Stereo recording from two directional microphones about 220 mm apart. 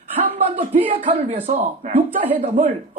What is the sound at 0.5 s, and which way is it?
Speech, 30° right (ahead or behind).